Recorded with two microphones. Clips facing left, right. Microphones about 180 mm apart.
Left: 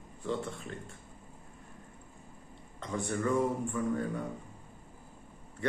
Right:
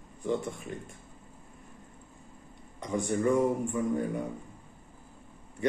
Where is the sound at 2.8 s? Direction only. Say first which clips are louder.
Right 4 dB; 15° right (ahead or behind).